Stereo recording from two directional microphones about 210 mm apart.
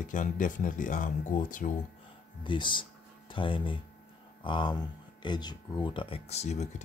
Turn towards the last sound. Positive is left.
turn(degrees=35)  # may be behind; listen again after turning